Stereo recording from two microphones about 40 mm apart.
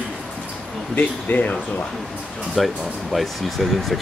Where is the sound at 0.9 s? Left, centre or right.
Left.